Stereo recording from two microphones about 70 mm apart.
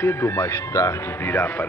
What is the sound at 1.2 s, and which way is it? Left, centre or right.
Speech, left.